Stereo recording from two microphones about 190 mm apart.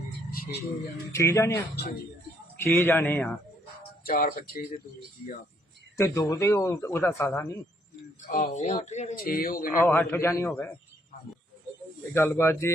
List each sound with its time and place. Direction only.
1.1 s speech: 15° left (ahead or behind)
1.7 s speech: 60° left (ahead or behind)
2.6 s speech: 15° left (ahead or behind)
4.0 s speech: 45° left (ahead or behind)
6.0 s speech: 15° left (ahead or behind)
8.3 s speech: 40° left (ahead or behind)
9.1 s speech: 50° left (ahead or behind)
9.8 s speech: 10° left (ahead or behind)
12.1 s speech: 10° left (ahead or behind)